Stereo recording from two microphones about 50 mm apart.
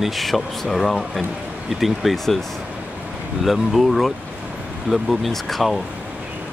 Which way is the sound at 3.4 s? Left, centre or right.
Centre.